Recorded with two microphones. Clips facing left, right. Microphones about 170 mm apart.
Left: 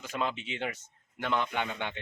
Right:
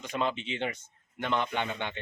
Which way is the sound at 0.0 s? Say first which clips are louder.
Right 2 dB; 5° left (ahead or behind).